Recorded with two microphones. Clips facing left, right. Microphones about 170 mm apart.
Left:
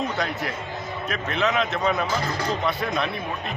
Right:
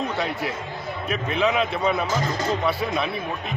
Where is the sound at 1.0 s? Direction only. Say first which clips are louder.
Right 2 dB; 5° right (ahead or behind).